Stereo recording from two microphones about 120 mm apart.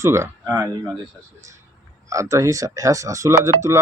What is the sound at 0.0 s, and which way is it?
Speech, 25° right (ahead or behind).